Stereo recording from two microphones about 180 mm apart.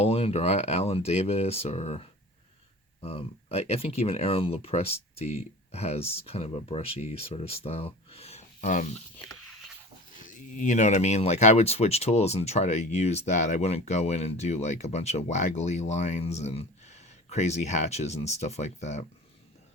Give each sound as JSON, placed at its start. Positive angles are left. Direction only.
{"t": 0.0, "sound": "speech", "side_deg": 35}
{"t": 9.1, "sound": "speech", "side_deg": 20}
{"t": 10.2, "sound": "speech", "side_deg": 45}